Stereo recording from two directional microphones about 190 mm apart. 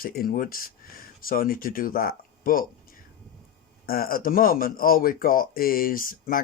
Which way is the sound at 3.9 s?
50° left (ahead or behind).